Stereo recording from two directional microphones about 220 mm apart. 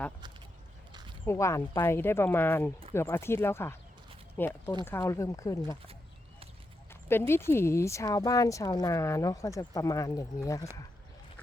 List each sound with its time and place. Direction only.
1.2 s speech: 10° left (ahead or behind)
7.1 s speech: 10° left (ahead or behind)